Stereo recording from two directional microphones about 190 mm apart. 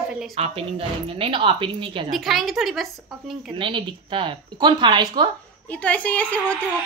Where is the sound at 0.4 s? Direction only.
30° right (ahead or behind).